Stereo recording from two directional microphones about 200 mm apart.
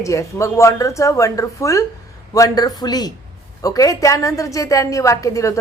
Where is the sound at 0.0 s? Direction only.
15° left (ahead or behind).